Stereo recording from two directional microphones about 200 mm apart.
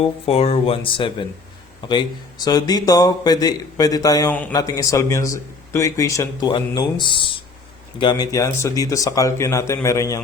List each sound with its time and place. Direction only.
0.3 s a man's voice: 30° left (ahead or behind)